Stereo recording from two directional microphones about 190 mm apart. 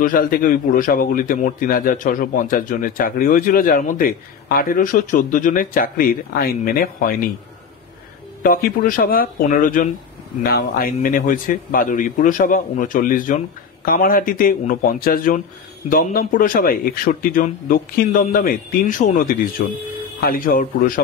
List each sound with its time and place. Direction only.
0.0 s speech: 45° left (ahead or behind)
8.4 s speech: 50° left (ahead or behind)